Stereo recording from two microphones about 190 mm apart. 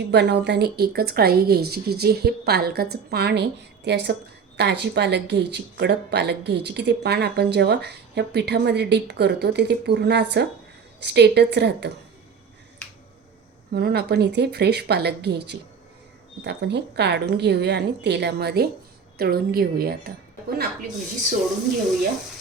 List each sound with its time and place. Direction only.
0.1 s speech: 65° right (ahead or behind)
13.7 s a woman's voice: 60° right (ahead or behind)
20.6 s a woman's voice: 45° right (ahead or behind)